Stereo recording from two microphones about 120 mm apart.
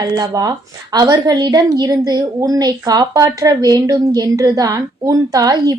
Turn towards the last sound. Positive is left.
turn(degrees=-30)  # may be behind; listen again after turning